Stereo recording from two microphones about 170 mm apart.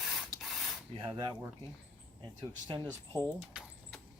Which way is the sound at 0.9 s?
25° right (ahead or behind).